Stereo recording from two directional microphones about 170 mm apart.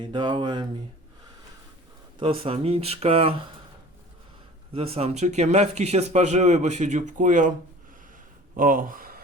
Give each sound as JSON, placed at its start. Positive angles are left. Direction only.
{"t": 0.0, "sound": "speech", "side_deg": -25}
{"t": 2.1, "sound": "speech", "side_deg": -30}
{"t": 4.7, "sound": "speech", "side_deg": -35}
{"t": 8.5, "sound": "speech", "side_deg": -55}